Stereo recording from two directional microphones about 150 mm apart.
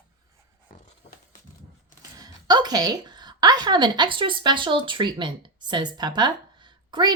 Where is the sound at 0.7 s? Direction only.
70° left (ahead or behind).